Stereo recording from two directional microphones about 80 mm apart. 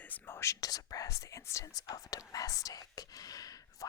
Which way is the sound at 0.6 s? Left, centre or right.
Left.